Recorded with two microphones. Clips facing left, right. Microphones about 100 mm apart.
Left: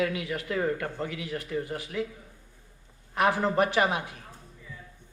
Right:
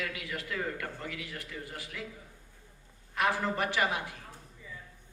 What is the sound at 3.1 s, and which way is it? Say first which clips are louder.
Speech: left 5 dB; 25° left (ahead or behind).